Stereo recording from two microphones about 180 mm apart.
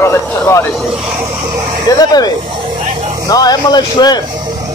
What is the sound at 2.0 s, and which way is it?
Speech, 20° left (ahead or behind).